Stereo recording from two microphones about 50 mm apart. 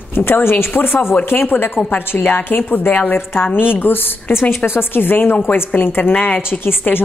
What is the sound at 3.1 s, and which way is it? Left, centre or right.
A woman's voice, left.